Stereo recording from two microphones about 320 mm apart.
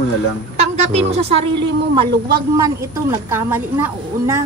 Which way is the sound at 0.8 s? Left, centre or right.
Centre.